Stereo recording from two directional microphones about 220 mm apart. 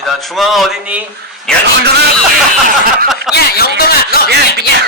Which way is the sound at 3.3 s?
45° left (ahead or behind).